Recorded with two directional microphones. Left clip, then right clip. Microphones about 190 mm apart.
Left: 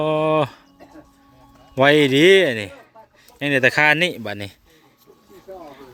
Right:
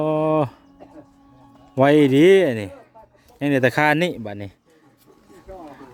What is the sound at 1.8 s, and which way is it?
Speech, 20° right (ahead or behind).